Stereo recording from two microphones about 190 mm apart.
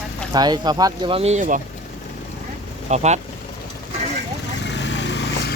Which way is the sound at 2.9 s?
35° right (ahead or behind).